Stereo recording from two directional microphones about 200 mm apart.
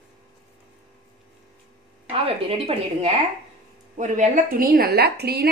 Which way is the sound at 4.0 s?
40° right (ahead or behind).